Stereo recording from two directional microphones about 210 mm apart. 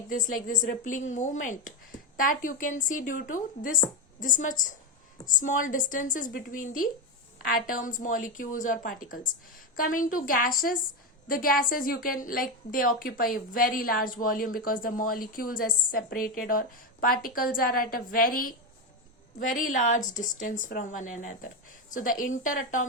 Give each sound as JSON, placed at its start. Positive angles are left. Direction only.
{"t": 0.1, "sound": "a woman's voice", "side_deg": 40}